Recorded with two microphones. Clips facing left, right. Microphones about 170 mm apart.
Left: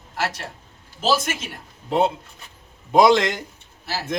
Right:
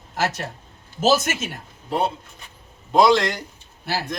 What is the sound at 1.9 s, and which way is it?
A man's voice, 20° left (ahead or behind).